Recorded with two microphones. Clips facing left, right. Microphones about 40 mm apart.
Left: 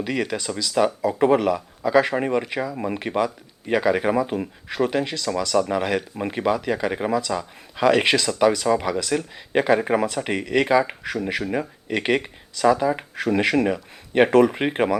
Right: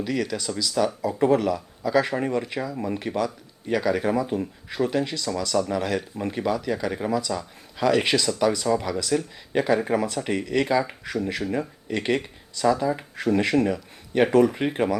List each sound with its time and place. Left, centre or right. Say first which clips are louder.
0.0 s speech: left 1 dB; left
10.4 s speech: left 5 dB; centre